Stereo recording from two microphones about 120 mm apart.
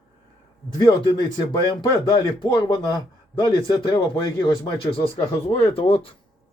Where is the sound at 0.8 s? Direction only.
40° left (ahead or behind).